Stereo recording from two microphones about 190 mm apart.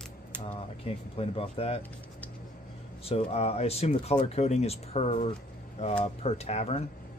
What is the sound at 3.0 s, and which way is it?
Speech, 30° left (ahead or behind).